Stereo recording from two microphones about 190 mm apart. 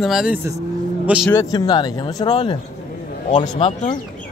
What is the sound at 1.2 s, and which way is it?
A man's voice, 15° left (ahead or behind).